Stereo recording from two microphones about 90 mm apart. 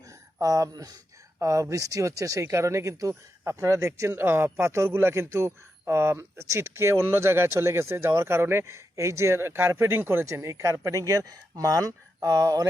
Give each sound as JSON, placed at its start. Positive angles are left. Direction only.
{"t": 0.3, "sound": "a man's voice", "side_deg": -40}